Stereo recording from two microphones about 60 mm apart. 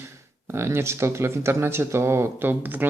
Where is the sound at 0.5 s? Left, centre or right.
Right.